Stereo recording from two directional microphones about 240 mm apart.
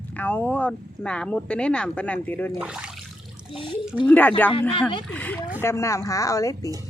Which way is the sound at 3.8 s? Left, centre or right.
Centre.